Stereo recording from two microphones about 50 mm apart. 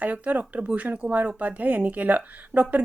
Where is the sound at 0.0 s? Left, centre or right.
Right.